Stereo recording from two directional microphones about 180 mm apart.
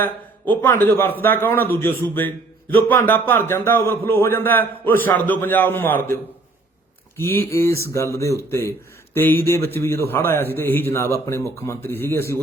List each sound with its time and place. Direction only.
0.0 s a man's voice: 10° left (ahead or behind)
7.2 s a man's voice: 15° left (ahead or behind)